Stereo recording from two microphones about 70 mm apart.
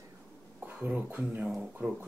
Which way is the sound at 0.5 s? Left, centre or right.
Right.